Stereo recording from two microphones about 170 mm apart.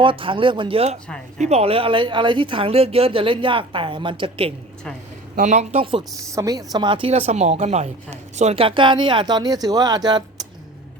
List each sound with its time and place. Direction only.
0.0 s speech: 30° right (ahead or behind)
5.4 s speech: 45° right (ahead or behind)
6.3 s speech: 20° right (ahead or behind)